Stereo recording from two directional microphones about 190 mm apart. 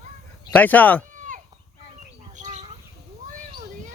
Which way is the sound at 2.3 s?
40° right (ahead or behind).